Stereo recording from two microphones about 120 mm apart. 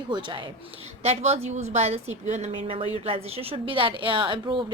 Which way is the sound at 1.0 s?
65° right (ahead or behind).